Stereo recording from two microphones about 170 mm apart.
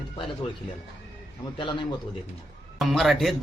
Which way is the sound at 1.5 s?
30° left (ahead or behind).